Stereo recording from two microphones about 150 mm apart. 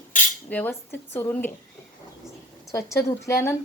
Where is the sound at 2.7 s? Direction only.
20° left (ahead or behind).